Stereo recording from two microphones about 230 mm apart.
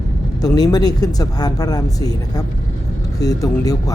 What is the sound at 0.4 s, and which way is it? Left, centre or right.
Speech, centre.